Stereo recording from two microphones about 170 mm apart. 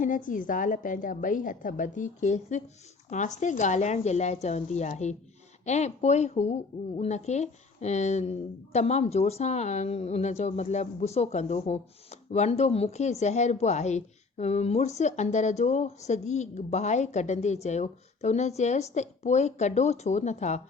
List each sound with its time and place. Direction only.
0.0 s a woman's voice: 50° left (ahead or behind)